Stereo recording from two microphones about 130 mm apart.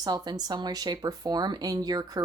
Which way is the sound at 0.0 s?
30° right (ahead or behind).